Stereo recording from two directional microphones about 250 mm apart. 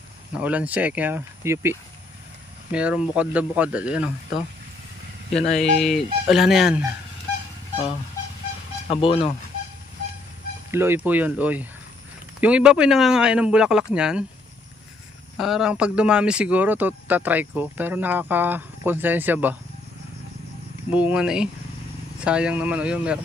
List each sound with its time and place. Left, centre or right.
0.3 s speech: centre
5.3 s speech: centre
8.9 s speech: left
10.7 s speech: centre
15.3 s speech: centre
20.9 s speech: centre